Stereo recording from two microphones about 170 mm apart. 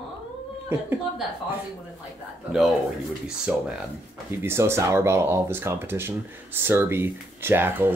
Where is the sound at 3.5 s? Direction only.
10° right (ahead or behind).